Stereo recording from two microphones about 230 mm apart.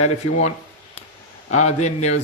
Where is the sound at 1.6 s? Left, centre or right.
Left.